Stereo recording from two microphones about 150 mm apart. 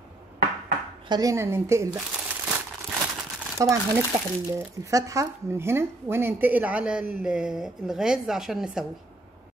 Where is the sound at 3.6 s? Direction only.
20° right (ahead or behind); by 8.9 s 5° right (ahead or behind).